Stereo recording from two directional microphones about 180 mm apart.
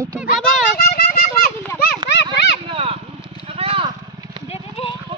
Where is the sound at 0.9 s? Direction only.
55° left (ahead or behind).